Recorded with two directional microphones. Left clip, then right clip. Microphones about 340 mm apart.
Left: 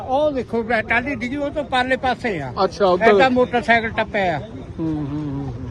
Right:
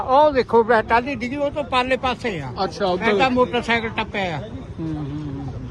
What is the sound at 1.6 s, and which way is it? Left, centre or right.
Speech, centre.